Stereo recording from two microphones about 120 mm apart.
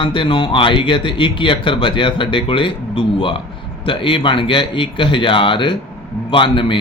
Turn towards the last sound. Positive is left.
turn(degrees=45)  # may be behind; listen again after turning